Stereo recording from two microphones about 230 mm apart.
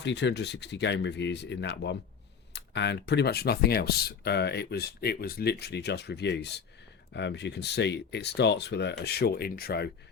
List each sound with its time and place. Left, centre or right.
0.0 s speech: left